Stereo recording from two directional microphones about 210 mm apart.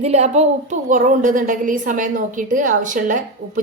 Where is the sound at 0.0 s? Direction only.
30° right (ahead or behind).